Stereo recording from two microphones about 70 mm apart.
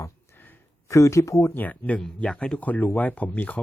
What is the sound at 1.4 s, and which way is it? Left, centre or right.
Speech, left.